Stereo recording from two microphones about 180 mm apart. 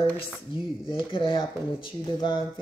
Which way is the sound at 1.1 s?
25° left (ahead or behind).